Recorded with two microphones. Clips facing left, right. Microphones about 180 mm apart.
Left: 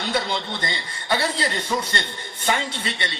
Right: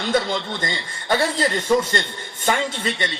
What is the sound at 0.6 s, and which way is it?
A man's voice, 45° right (ahead or behind).